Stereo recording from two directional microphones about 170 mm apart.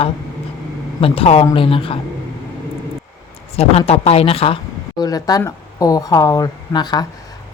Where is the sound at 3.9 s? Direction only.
35° left (ahead or behind).